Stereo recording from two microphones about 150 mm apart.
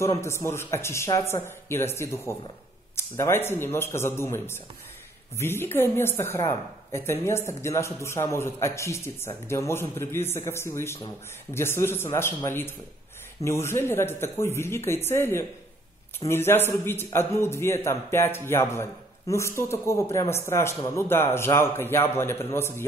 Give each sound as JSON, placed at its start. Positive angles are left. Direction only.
{"t": 0.0, "sound": "speech", "side_deg": 20}